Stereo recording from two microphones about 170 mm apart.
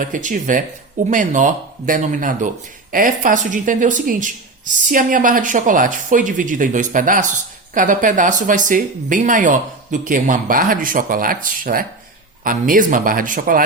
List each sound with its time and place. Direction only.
0.0 s speech: 50° right (ahead or behind)